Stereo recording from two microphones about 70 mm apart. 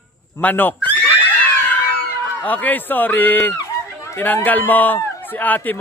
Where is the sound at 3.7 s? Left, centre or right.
Left.